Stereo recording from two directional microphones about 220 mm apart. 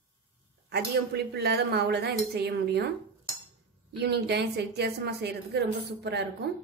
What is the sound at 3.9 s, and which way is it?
A woman's voice, 50° right (ahead or behind).